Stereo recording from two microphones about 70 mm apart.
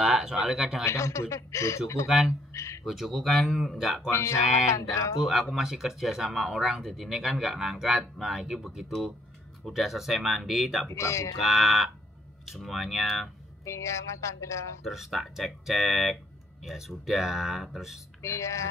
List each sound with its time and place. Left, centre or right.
0.0 s speech: centre
0.8 s speech: left
2.0 s speech: centre
2.5 s a sound: left
2.8 s speech: centre
4.1 s speech: left
5.2 s speech: centre
10.9 s speech: left
11.4 s speech: centre
13.7 s speech: left
14.8 s speech: centre
18.2 s speech: left